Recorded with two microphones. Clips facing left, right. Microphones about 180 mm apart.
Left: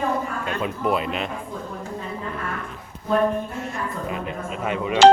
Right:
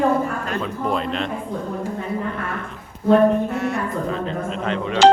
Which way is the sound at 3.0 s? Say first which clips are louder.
Right 6 dB; 70° right (ahead or behind).